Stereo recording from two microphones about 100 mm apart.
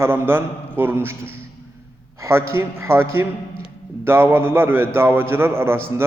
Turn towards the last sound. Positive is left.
turn(degrees=-25)  # may be behind; listen again after turning